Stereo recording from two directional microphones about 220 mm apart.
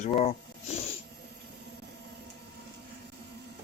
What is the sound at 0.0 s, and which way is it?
Speech, 30° left (ahead or behind).